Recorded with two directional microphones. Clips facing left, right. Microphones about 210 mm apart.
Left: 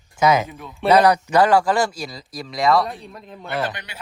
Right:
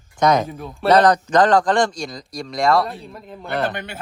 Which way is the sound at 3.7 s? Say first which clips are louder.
Right 8 dB; 50° right (ahead or behind).